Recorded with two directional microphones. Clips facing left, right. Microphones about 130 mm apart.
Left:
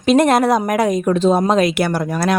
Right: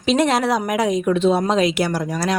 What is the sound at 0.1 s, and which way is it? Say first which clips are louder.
A woman's voice: left 5 dB; 50° left (ahead or behind).